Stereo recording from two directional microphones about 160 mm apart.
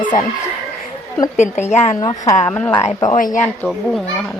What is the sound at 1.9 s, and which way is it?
Speech, 25° left (ahead or behind).